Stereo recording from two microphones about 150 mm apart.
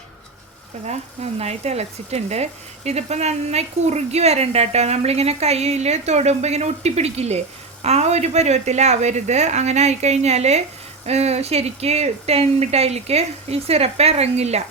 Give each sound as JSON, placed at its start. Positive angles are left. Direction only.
{"t": 0.9, "sound": "speech", "side_deg": -45}